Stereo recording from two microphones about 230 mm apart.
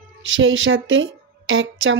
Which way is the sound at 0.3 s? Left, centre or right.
Right.